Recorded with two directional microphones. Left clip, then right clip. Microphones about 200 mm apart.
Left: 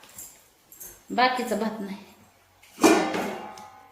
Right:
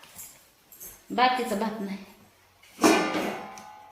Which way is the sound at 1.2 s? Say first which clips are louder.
Left 1 dB; 10° left (ahead or behind).